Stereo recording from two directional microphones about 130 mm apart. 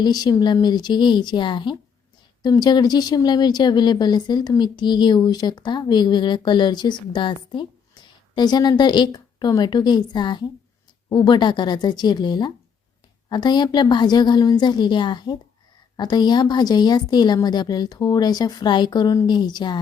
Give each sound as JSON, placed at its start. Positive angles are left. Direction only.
{"t": 0.0, "sound": "speech", "side_deg": 30}